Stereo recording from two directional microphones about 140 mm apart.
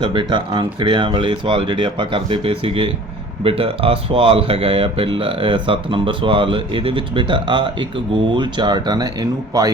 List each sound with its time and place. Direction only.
0.0 s speech: 35° right (ahead or behind)